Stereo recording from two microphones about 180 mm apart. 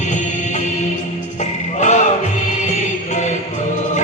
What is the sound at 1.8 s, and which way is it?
Music, 40° left (ahead or behind).